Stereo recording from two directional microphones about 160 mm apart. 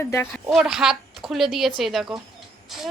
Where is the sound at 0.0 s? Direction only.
15° left (ahead or behind).